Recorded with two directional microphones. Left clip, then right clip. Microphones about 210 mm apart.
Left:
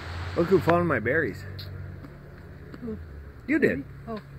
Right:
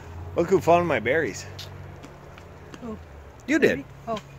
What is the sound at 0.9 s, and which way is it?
Speech, 20° right (ahead or behind).